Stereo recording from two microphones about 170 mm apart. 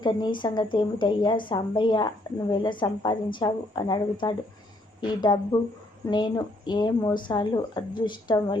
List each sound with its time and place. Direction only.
0.0 s a woman's voice: 25° left (ahead or behind)